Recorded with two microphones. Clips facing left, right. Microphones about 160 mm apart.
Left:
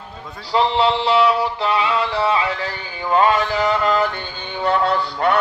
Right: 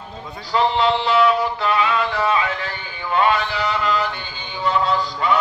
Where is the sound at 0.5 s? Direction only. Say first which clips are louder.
Left 1 dB; 30° left (ahead or behind).